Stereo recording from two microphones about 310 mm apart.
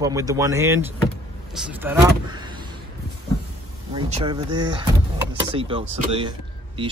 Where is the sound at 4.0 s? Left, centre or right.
Centre.